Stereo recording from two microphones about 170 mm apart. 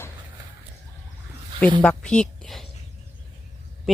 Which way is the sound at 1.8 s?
5° left (ahead or behind).